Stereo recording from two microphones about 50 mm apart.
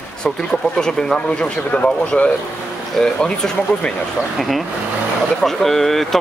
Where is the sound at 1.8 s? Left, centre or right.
Left.